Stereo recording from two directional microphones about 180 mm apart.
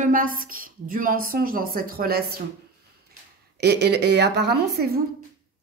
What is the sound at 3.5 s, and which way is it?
A woman's voice, 70° right (ahead or behind).